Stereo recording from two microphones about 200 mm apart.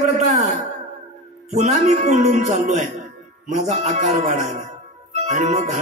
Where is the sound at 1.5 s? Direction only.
35° right (ahead or behind).